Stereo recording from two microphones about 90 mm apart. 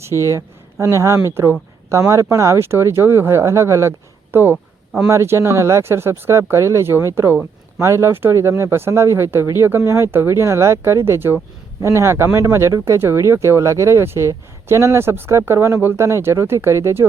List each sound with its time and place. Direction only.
0.3 s speech: 35° right (ahead or behind)
4.5 s a sound: 5° right (ahead or behind)
5.0 s speech: 30° right (ahead or behind)